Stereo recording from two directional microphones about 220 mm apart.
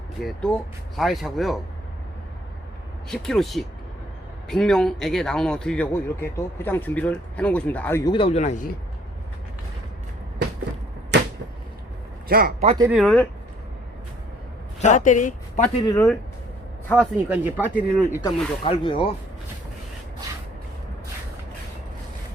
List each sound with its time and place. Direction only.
0.3 s speech: centre (ahead or behind)
3.1 s a man's voice: centre (ahead or behind); by 8.7 s 35° left (ahead or behind)
11.1 s a sound: 50° right (ahead or behind)
12.3 s a man's voice: 40° right (ahead or behind)
12.6 s speech: 20° right (ahead or behind)
12.9 s speech: centre (ahead or behind)
14.8 s speech: 35° left (ahead or behind)
15.9 s a man's voice: 15° left (ahead or behind)
17.2 s speech: 5° right (ahead or behind)
18.2 s speech: 25° left (ahead or behind)